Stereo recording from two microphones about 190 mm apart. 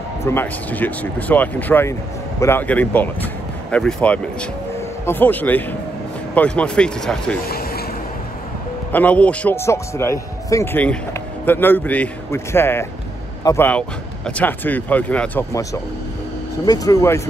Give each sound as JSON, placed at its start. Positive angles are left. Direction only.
{"t": 0.2, "sound": "speech", "side_deg": 10}
{"t": 7.4, "sound": "a sound", "side_deg": 55}
{"t": 8.9, "sound": "speech", "side_deg": 5}